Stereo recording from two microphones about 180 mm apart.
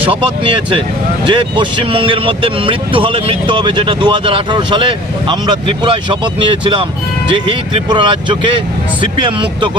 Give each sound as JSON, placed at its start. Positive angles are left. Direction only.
{"t": 1.2, "sound": "speech", "side_deg": -30}
{"t": 7.9, "sound": "speech", "side_deg": -25}